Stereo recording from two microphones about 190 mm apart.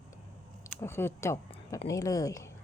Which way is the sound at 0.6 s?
15° left (ahead or behind).